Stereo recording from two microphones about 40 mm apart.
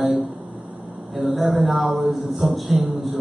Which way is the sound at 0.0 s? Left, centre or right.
Centre.